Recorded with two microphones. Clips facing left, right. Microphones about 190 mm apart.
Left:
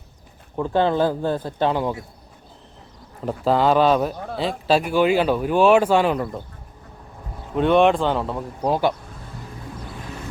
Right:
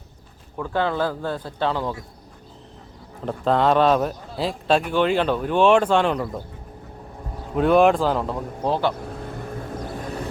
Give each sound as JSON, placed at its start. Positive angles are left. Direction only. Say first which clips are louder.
{"t": 0.5, "sound": "speech", "louder": "left 4 dB", "side_deg": 20}
{"t": 3.2, "sound": "speech", "louder": "left 1 dB", "side_deg": 5}
{"t": 7.5, "sound": "speech", "louder": "even", "side_deg": 0}
{"t": 8.6, "sound": "speech", "louder": "left 2 dB", "side_deg": 10}
{"t": 9.0, "sound": "vehicle", "louder": "right 8 dB", "side_deg": -60}